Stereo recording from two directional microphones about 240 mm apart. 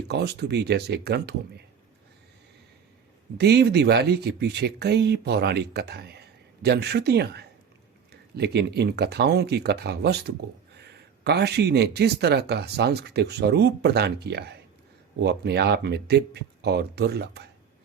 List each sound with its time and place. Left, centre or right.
0.1 s speech: right
3.3 s speech: right